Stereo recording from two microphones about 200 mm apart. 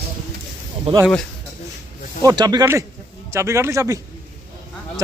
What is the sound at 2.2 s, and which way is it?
Speech, 20° right (ahead or behind).